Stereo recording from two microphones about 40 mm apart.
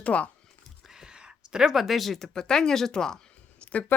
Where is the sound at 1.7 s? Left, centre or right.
Centre.